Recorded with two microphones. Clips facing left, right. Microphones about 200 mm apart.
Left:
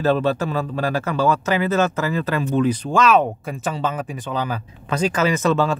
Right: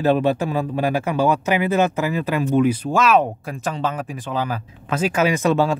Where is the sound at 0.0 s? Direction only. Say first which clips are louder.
Right 1 dB; 15° right (ahead or behind).